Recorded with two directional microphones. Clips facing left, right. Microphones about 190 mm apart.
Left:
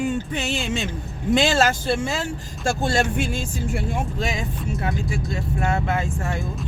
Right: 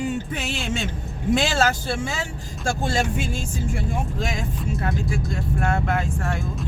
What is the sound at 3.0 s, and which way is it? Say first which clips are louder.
Music: left 2 dB; 65° left (ahead or behind).